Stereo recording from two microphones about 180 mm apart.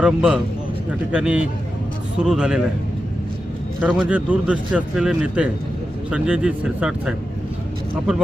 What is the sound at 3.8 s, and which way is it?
A man's voice, 5° right (ahead or behind).